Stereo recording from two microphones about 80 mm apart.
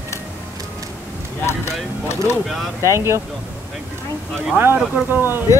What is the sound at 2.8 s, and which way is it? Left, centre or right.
Speech, right.